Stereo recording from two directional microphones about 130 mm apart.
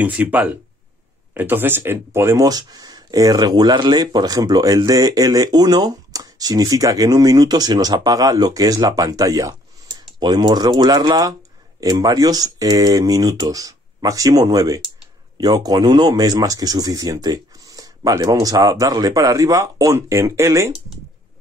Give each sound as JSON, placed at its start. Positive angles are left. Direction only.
{"t": 0.0, "sound": "speech", "side_deg": -10}